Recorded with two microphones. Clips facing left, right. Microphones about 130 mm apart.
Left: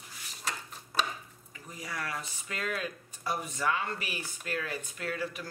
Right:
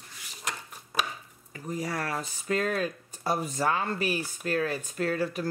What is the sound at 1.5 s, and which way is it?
Speech, 45° right (ahead or behind).